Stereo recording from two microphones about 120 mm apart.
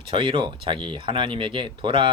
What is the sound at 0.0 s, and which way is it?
Speech, 50° right (ahead or behind).